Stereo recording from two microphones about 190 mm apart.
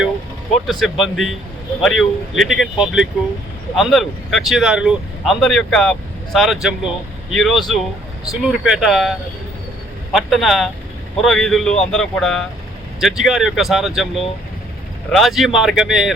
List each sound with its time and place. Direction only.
0.7 s speech: centre (ahead or behind)